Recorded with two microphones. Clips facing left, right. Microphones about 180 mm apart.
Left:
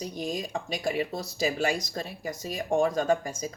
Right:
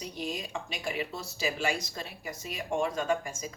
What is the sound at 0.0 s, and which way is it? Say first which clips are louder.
Speech: left 4 dB; 40° left (ahead or behind).